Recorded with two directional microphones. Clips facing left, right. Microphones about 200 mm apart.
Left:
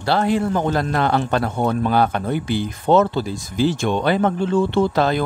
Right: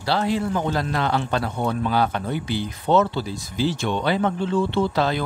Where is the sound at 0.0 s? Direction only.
50° left (ahead or behind).